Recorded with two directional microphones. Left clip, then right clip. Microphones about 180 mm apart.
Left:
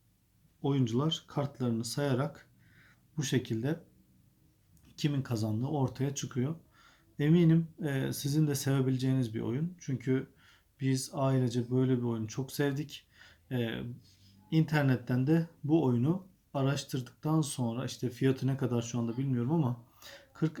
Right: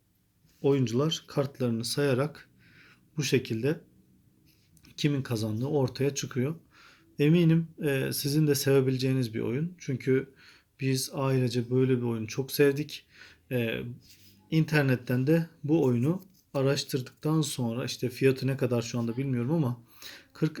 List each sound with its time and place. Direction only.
0.6 s speech: 15° right (ahead or behind)
4.9 s speech: 10° right (ahead or behind)